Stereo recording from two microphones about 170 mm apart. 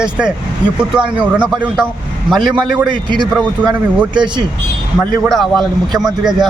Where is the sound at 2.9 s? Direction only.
25° right (ahead or behind).